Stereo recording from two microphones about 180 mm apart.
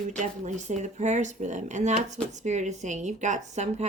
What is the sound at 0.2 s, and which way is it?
A woman's voice, 40° right (ahead or behind).